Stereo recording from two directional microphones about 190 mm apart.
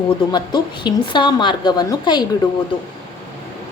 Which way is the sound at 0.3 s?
25° left (ahead or behind).